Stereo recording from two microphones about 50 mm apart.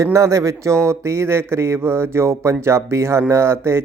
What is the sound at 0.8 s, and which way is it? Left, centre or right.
Speech, right.